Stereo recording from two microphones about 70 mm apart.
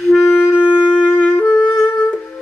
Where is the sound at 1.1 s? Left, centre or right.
Left.